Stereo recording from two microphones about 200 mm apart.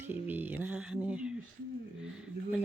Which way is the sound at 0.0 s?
10° right (ahead or behind).